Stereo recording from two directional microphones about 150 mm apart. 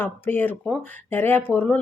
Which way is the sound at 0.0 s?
15° left (ahead or behind).